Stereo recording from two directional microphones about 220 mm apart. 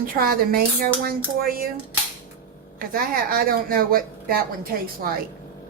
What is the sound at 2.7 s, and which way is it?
Speech, 40° right (ahead or behind).